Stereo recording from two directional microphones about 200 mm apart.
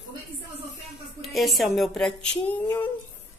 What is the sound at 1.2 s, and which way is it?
Speech, centre (ahead or behind).